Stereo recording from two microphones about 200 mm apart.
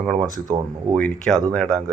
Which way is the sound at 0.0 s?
Centre (ahead or behind).